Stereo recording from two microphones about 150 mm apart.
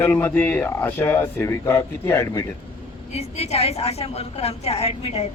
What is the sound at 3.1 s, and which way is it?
A woman's voice, 45° left (ahead or behind).